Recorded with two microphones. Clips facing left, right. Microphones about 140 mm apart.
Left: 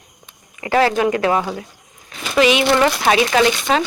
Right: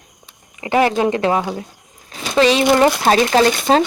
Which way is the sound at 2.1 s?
35° right (ahead or behind).